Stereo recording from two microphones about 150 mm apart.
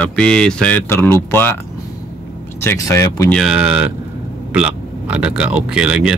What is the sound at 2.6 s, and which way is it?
Speech, 20° left (ahead or behind).